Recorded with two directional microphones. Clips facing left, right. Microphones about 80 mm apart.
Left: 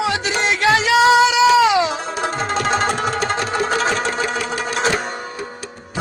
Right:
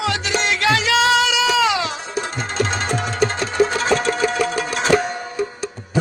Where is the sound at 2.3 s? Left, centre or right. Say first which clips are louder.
Left 4 dB; left.